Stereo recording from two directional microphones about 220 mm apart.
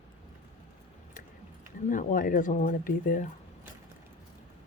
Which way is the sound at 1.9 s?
35° left (ahead or behind).